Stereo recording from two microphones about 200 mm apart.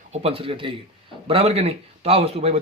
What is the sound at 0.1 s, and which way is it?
A man's voice, 30° right (ahead or behind).